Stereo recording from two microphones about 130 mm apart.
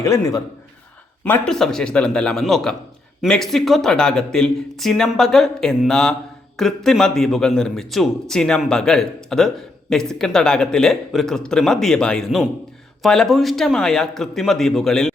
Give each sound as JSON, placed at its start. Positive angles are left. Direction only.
{"t": 0.0, "sound": "a man's voice", "side_deg": 25}
{"t": 1.2, "sound": "a man's voice", "side_deg": 10}